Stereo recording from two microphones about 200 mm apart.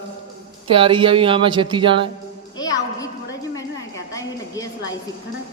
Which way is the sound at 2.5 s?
20° left (ahead or behind).